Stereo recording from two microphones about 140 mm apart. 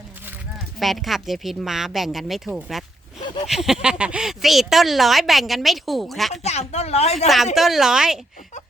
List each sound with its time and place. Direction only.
0.8 s speech: centre (ahead or behind)
6.4 s a woman's voice: 50° left (ahead or behind)
7.5 s speech: centre (ahead or behind)